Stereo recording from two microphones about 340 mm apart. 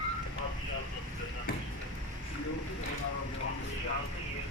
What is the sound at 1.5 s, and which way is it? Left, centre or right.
Basketball bounce, left.